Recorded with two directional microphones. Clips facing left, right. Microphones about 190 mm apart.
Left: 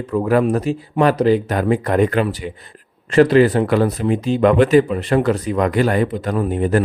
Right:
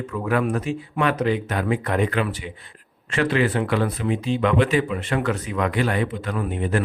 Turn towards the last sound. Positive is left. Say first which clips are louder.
# left 7 dB
turn(degrees=40)  # may be behind; listen again after turning